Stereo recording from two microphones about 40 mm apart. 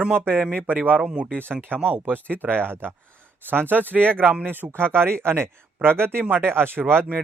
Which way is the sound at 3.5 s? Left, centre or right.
Right.